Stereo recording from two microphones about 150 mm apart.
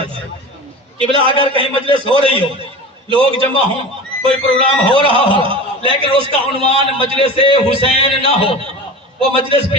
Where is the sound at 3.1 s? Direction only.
35° right (ahead or behind).